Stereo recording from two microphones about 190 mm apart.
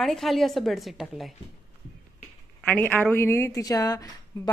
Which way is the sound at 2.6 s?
10° left (ahead or behind).